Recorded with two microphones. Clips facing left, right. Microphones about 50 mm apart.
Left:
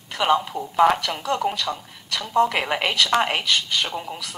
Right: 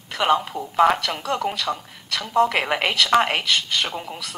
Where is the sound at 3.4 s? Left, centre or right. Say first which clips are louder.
Even; right.